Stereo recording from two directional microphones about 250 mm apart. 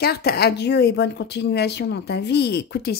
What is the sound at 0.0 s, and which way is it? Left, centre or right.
Speech, left.